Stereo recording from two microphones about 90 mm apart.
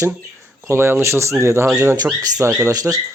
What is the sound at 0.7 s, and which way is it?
Speech, 25° right (ahead or behind).